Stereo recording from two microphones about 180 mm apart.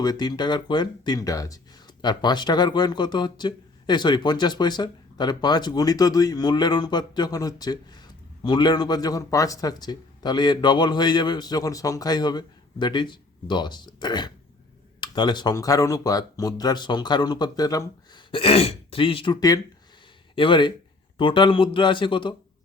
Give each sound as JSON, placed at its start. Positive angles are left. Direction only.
{"t": 0.0, "sound": "a man's voice", "side_deg": 20}